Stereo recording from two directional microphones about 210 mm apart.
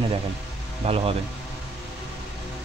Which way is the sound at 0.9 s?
25° right (ahead or behind).